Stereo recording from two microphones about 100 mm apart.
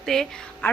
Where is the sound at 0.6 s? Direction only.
20° left (ahead or behind).